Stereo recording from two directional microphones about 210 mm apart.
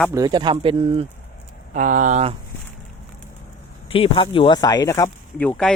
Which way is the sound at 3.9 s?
25° left (ahead or behind).